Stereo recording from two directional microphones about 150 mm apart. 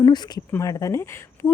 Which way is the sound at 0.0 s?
30° left (ahead or behind).